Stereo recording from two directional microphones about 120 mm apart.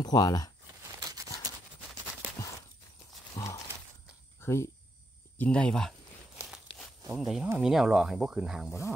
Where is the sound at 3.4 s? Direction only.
25° left (ahead or behind).